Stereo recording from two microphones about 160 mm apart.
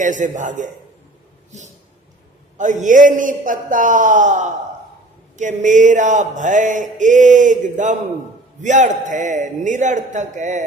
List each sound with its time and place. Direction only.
0.0 s mantra: 50° right (ahead or behind)
2.6 s mantra: 50° right (ahead or behind)